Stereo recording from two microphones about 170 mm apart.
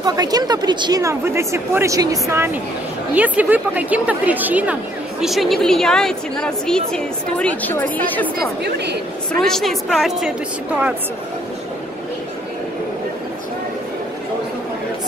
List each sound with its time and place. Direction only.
0.0 s a woman's voice: 20° right (ahead or behind); by 8.3 s 10° left (ahead or behind)
8.6 s a woman's voice: 80° right
9.3 s a woman's voice: 5° left (ahead or behind)